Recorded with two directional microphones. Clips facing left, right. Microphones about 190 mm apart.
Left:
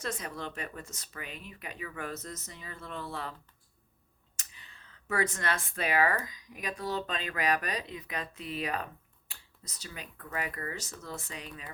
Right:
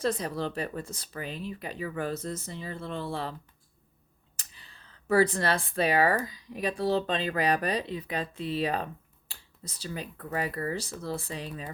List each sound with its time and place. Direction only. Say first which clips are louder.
0.0 s speech: right 8 dB; 35° right (ahead or behind)
4.4 s speech: right 1 dB; 35° right (ahead or behind)